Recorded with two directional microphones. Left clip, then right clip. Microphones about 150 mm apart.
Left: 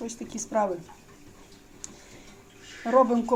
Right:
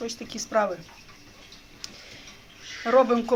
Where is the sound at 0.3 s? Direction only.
10° left (ahead or behind).